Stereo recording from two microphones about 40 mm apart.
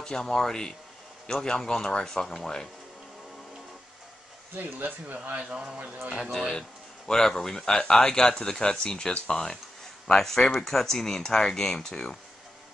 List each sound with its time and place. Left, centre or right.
0.0 s speech: centre
4.6 s speech: right
5.4 s a man's voice: right
7.1 s speech: centre